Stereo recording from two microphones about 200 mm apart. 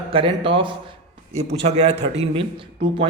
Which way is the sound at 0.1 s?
25° right (ahead or behind).